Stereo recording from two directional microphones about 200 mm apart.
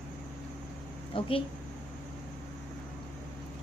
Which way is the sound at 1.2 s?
25° left (ahead or behind).